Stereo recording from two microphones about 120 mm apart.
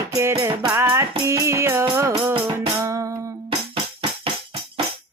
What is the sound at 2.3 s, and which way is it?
Music, 45° right (ahead or behind).